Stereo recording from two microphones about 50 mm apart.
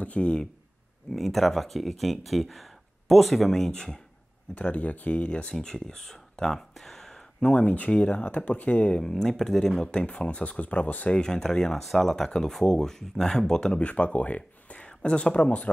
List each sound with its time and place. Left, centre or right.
0.0 s speech: left
1.1 s speech: centre
4.6 s speech: left
5.6 s speech: centre
7.5 s speech: left
9.0 s speech: centre
9.8 s speech: left
11.1 s speech: centre; by 15.7 s left